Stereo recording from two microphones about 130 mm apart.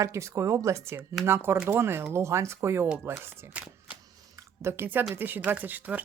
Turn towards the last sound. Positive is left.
turn(degrees=-15)  # may be behind; listen again after turning